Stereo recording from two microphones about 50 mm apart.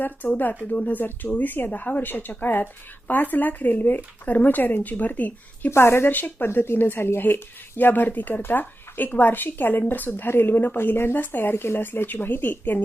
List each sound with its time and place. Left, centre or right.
0.3 s speech: left
5.7 s a woman's voice: left
6.1 s speech: left
10.8 s speech: left
11.1 s speech: left
11.5 s speech: left